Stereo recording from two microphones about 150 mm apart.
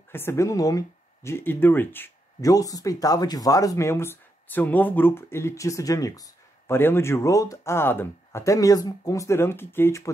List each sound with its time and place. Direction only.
0.1 s speech: 15° left (ahead or behind)